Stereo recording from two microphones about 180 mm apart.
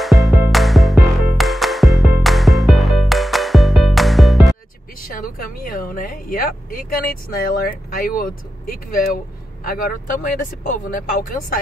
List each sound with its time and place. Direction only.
0.0 s music: centre (ahead or behind)
5.0 s speech: 50° left (ahead or behind)